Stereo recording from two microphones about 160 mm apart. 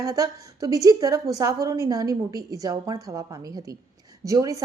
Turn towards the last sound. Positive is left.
turn(degrees=-20)  # may be behind; listen again after turning